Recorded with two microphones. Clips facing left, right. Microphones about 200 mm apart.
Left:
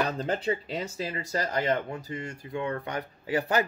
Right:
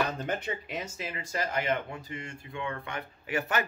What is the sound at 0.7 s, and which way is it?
Speech, 35° left (ahead or behind).